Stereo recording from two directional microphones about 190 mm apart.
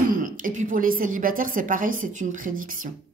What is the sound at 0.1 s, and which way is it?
A woman's voice, 45° right (ahead or behind).